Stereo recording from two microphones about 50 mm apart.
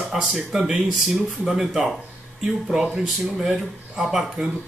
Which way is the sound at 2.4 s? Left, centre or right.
Centre.